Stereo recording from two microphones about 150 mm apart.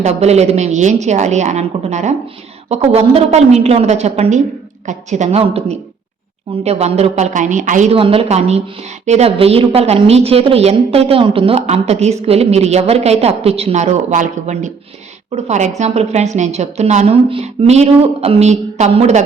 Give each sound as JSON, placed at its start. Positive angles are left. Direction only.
{"t": 0.0, "sound": "a woman's voice", "side_deg": -45}
{"t": 7.9, "sound": "a woman's voice", "side_deg": -40}